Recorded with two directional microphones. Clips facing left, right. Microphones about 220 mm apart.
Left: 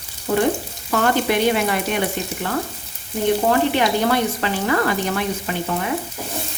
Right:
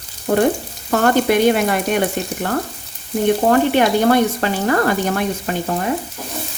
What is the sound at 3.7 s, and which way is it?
A woman's voice, 50° right (ahead or behind).